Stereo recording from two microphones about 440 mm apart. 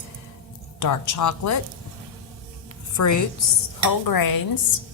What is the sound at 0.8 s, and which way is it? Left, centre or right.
Speech, left.